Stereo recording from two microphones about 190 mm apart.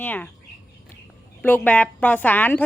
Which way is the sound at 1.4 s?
10° left (ahead or behind).